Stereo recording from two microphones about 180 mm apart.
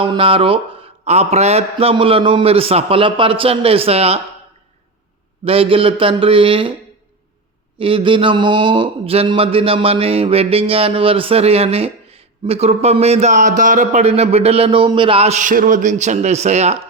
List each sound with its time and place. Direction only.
0.0 s speech: 30° right (ahead or behind)
5.5 s speech: 30° right (ahead or behind)
7.8 s speech: 30° right (ahead or behind)